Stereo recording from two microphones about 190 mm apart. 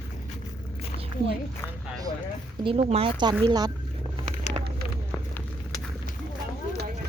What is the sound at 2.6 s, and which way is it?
Speech, 30° right (ahead or behind).